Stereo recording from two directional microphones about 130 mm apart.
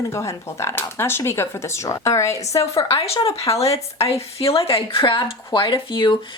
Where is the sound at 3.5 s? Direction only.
50° left (ahead or behind).